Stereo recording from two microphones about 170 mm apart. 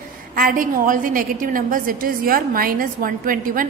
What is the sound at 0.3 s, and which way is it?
A woman's voice, 55° right (ahead or behind).